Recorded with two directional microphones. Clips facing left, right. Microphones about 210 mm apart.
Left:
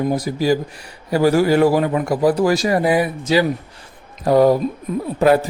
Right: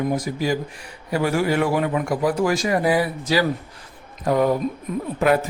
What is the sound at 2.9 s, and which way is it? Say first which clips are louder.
Speech: left 4 dB; 25° left (ahead or behind).